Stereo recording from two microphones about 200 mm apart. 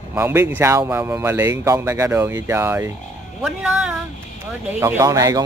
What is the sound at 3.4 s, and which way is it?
Speech, 5° right (ahead or behind).